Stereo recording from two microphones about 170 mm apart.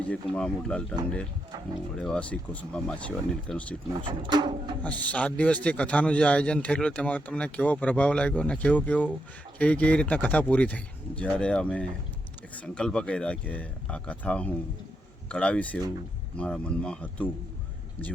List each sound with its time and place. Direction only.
0.1 s speech: 5° left (ahead or behind)
2.0 s a man's voice: 5° left (ahead or behind)
4.0 s speech: 25° right (ahead or behind)
4.8 s a man's voice: 10° left (ahead or behind)